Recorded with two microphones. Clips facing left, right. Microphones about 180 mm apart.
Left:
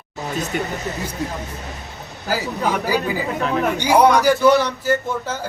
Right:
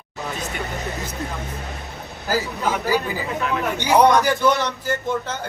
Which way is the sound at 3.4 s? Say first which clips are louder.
Left 2 dB; 35° left (ahead or behind).